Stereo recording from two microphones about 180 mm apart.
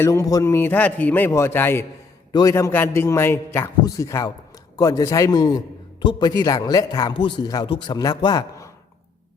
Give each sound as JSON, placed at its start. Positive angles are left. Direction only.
{"t": 0.0, "sound": "a man's voice", "side_deg": 15}